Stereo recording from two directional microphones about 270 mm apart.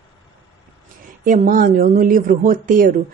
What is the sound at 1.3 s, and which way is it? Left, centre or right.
Speech, right.